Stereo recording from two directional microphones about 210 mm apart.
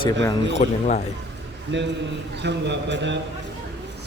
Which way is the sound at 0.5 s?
35° left (ahead or behind).